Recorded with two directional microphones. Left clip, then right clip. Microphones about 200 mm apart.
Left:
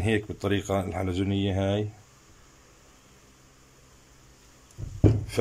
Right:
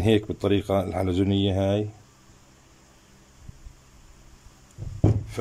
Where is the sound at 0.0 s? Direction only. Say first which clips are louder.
Right 5 dB; 15° right (ahead or behind).